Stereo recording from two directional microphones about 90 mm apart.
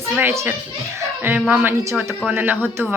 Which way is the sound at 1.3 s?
10° right (ahead or behind).